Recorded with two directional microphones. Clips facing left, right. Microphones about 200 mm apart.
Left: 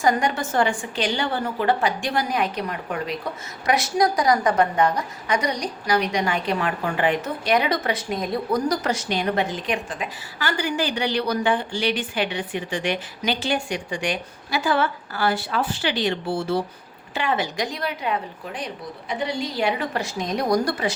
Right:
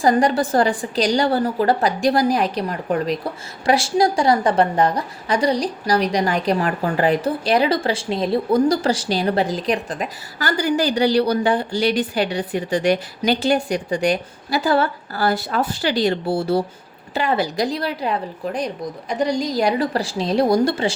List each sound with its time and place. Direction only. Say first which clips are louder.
0.0 s a woman's voice: right 5 dB; 35° right (ahead or behind)